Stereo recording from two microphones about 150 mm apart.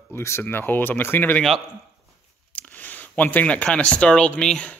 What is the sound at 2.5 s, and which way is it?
Speech, 10° left (ahead or behind).